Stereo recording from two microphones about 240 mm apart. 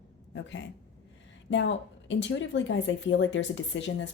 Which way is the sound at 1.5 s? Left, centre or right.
Left.